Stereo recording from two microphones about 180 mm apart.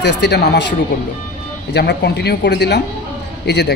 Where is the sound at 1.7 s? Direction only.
65° left (ahead or behind).